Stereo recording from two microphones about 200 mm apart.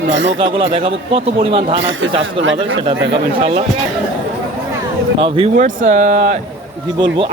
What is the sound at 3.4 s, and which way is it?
Speech, 30° right (ahead or behind).